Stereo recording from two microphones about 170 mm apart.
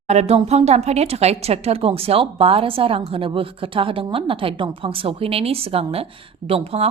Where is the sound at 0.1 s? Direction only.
40° right (ahead or behind).